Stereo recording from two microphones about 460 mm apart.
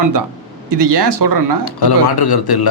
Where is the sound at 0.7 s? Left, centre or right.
Right.